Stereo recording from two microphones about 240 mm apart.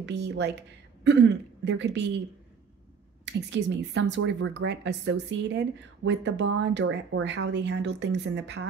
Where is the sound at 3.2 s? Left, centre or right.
Right.